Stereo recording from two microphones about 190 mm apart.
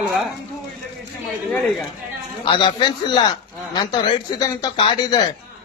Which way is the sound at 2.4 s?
25° left (ahead or behind).